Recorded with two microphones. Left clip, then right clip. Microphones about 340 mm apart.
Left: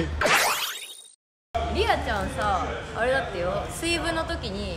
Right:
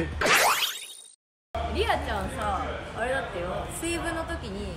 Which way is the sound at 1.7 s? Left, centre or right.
Centre.